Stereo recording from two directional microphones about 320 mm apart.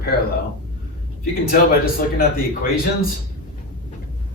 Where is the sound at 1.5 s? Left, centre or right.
Left.